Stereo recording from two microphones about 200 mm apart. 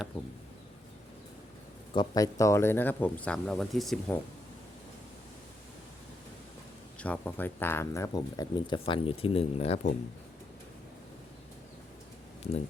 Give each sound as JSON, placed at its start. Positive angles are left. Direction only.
{"t": 1.9, "sound": "speech", "side_deg": 20}
{"t": 7.0, "sound": "speech", "side_deg": 5}